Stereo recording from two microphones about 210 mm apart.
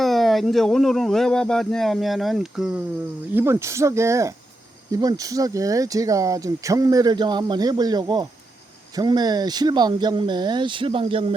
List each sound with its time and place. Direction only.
0.0 s speech: centre (ahead or behind); by 11.3 s 25° right (ahead or behind)